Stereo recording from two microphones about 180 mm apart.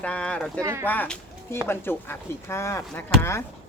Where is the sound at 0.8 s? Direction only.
10° left (ahead or behind).